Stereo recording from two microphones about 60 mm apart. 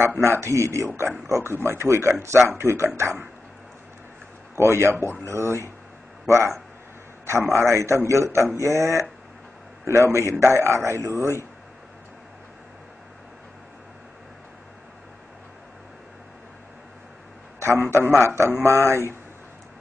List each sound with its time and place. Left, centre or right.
0.2 s speech: right
4.6 s speech: right
7.5 s a man's voice: right
17.6 s a sound: right
17.9 s a man's voice: right
18.2 s speech: right